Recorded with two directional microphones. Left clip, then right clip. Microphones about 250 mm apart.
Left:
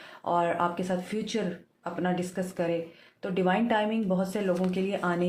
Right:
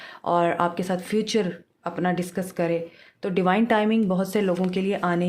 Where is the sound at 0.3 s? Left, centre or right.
Right.